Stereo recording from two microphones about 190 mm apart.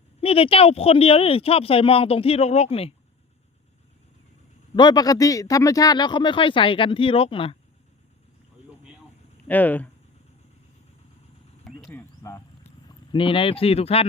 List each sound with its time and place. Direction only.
0.2 s speech: 30° left (ahead or behind)
4.8 s speech: 20° left (ahead or behind)
9.5 s speech: 10° left (ahead or behind)
11.9 s cricket: 10° left (ahead or behind)
12.9 s speech: 25° left (ahead or behind)